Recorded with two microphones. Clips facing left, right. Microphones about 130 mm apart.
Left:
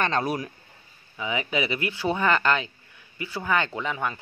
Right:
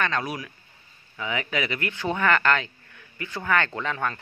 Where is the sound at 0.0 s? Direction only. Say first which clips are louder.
Left 2 dB; 30° left (ahead or behind).